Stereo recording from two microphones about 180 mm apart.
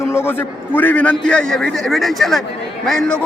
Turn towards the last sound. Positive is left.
turn(degrees=5)  # may be behind; listen again after turning